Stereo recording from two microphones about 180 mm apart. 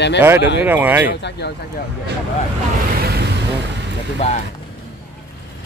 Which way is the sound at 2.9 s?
60° right (ahead or behind).